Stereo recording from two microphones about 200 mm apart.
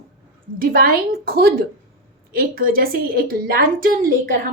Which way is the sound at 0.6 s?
45° right (ahead or behind).